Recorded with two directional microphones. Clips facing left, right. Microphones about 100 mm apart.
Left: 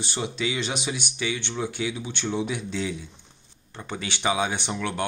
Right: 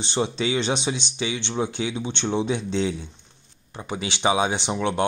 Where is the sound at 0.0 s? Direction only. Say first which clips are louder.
Right 4 dB; 30° right (ahead or behind).